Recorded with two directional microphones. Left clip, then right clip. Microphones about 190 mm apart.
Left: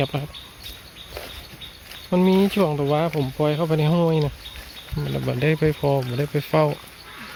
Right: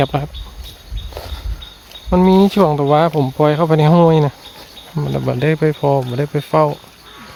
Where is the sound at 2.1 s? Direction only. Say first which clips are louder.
Right 7 dB; 15° right (ahead or behind).